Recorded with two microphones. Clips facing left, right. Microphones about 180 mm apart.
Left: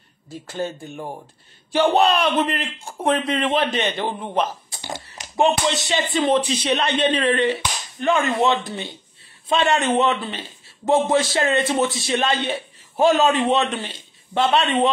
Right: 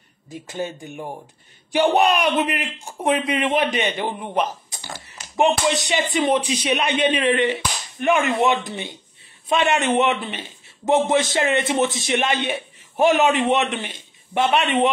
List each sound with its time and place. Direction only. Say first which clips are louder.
0.3 s speech: left 1 dB; 15° right (ahead or behind)
4.1 s a man's voice: even; centre (ahead or behind)
4.8 s a sound: left 5 dB; 15° left (ahead or behind)
5.4 s a man's voice: even; 15° right (ahead or behind)